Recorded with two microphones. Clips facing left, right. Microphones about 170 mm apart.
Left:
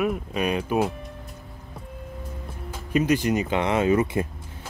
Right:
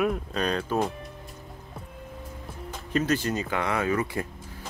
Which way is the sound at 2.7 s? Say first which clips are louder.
Left 4 dB; 10° left (ahead or behind).